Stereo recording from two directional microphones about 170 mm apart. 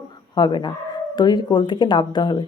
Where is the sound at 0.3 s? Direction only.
25° left (ahead or behind).